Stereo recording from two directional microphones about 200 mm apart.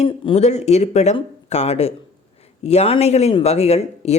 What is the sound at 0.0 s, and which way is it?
Speech, 35° left (ahead or behind).